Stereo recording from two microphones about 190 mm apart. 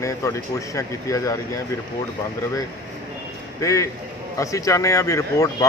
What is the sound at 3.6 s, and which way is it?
Speech, 15° left (ahead or behind).